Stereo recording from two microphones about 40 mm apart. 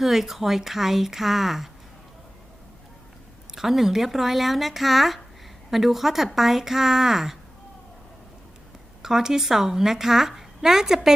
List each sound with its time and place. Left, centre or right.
0.0 s speech: centre
3.5 s speech: centre
9.0 s speech: centre